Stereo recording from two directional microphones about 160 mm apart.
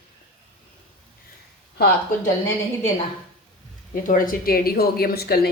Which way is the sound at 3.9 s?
55° left (ahead or behind).